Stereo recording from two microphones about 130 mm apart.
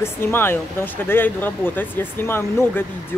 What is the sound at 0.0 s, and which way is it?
Speech, 15° left (ahead or behind).